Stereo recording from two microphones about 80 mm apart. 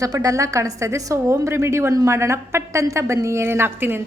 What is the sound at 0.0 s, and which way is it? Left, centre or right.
A woman's voice, right.